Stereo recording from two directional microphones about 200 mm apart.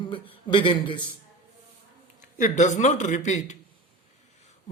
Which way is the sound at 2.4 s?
40° left (ahead or behind).